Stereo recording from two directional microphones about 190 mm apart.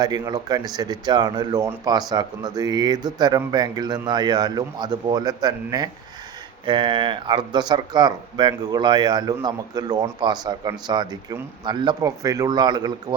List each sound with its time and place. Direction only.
0.0 s speech: 20° right (ahead or behind)